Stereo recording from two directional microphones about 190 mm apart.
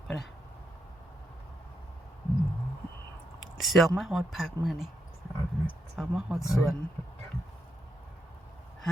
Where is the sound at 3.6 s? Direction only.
Centre (ahead or behind).